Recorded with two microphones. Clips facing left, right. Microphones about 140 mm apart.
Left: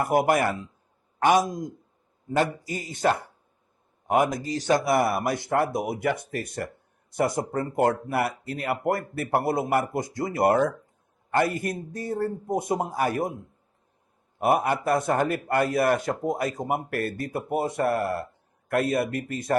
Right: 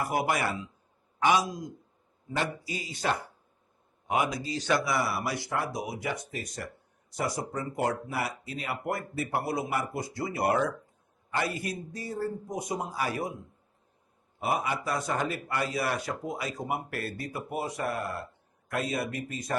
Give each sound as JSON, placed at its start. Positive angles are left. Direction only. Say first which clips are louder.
{"t": 0.0, "sound": "a man's voice", "louder": "left 7 dB", "side_deg": 50}